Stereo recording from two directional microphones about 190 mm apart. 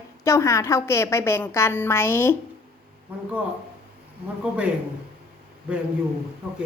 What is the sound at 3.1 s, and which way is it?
Speech, 10° right (ahead or behind).